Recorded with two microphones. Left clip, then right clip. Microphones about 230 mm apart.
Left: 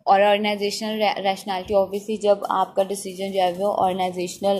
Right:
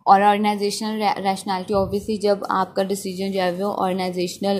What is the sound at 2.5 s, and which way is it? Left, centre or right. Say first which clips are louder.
A woman's voice: even; right.